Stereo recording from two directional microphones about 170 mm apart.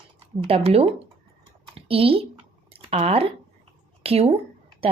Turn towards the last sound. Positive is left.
turn(degrees=-35)  # may be behind; listen again after turning